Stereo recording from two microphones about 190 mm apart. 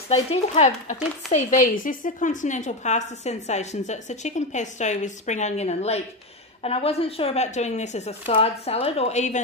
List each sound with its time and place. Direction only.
0.1 s a woman's voice: 35° left (ahead or behind)